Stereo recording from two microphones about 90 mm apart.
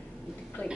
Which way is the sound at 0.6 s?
20° left (ahead or behind).